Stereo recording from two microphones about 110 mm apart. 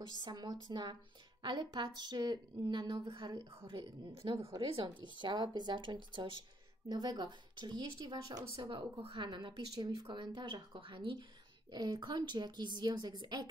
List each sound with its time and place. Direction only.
0.2 s a woman's voice: 40° right (ahead or behind)
4.1 s a woman's voice: 55° right (ahead or behind); by 13.5 s 40° right (ahead or behind)